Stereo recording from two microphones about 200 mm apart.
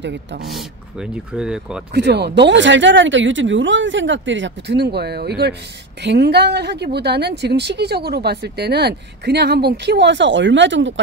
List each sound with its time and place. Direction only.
0.0 s a woman's voice: 60° right (ahead or behind)
0.5 s speech: centre (ahead or behind)
2.0 s a woman's voice: 55° right (ahead or behind)